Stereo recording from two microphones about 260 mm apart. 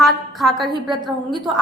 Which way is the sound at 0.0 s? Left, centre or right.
Centre.